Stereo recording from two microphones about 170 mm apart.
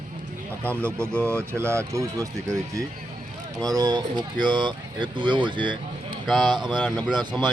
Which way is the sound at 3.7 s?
25° right (ahead or behind).